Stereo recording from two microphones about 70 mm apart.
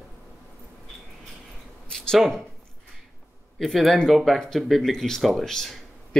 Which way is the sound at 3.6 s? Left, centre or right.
Centre.